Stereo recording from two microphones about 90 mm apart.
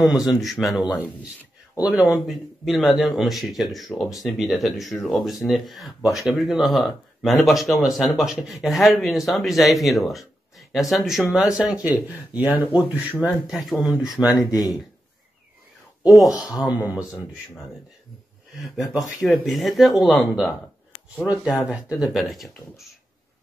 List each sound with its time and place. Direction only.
0.0 s speech: 5° right (ahead or behind)
11.9 s speech: 20° right (ahead or behind)
13.5 s speech: centre (ahead or behind)
14.3 s speech: 50° left (ahead or behind)
16.3 s speech: 40° left (ahead or behind)
16.6 s speech: 15° right (ahead or behind)
18.6 s speech: centre (ahead or behind)
22.1 s speech: centre (ahead or behind)